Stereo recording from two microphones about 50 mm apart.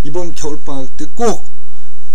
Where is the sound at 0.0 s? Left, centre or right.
Centre.